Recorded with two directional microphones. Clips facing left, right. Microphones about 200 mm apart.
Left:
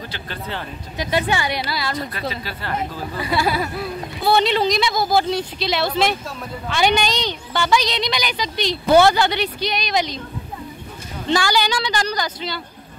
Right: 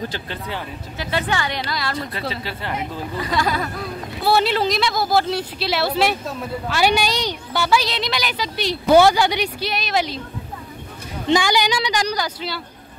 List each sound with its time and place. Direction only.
0.9 s a woman's voice: 15° left (ahead or behind)
2.0 s speech: 30° right (ahead or behind)
3.2 s a woman's voice: 10° left (ahead or behind)
4.2 s speech: 5° right (ahead or behind)
11.2 s speech: 15° right (ahead or behind)